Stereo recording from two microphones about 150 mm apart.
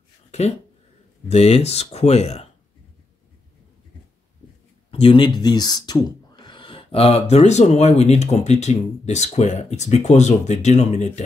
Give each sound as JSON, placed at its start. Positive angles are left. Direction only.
{"t": 0.3, "sound": "a sound", "side_deg": 45}
{"t": 1.3, "sound": "speech", "side_deg": 45}
{"t": 4.9, "sound": "speech", "side_deg": 35}